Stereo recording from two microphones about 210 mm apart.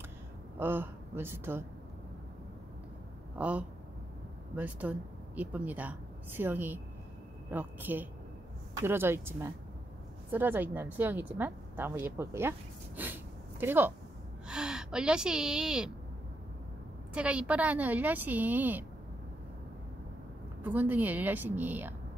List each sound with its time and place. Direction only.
0.6 s speech: 10° right (ahead or behind)
3.3 s a woman's voice: 5° right (ahead or behind)
17.1 s a woman's voice: 5° right (ahead or behind)
20.6 s a woman's voice: 10° right (ahead or behind)